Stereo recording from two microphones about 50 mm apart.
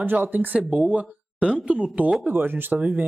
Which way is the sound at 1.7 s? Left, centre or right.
Right.